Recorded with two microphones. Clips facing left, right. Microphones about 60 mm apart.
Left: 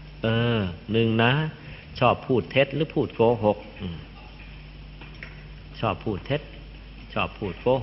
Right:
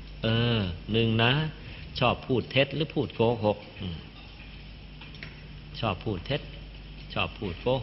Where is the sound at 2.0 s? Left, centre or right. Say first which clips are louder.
Left 5 dB; left.